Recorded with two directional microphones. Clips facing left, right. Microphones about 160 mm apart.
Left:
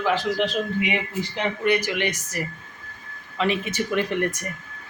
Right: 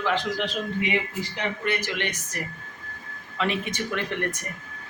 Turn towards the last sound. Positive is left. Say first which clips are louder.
# left 5 dB
turn(degrees=10)  # may be behind; listen again after turning